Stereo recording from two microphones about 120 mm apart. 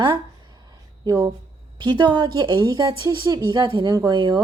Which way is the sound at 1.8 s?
40° right (ahead or behind).